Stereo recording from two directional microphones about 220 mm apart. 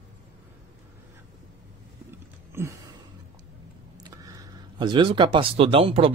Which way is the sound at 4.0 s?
20° right (ahead or behind).